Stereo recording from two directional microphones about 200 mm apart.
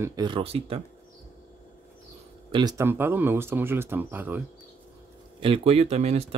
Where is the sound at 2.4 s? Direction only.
20° right (ahead or behind).